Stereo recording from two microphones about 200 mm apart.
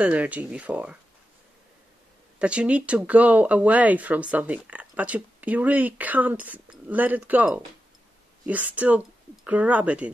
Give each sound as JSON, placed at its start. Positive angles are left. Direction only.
{"t": 0.0, "sound": "speech", "side_deg": -5}
{"t": 2.3, "sound": "speech", "side_deg": -5}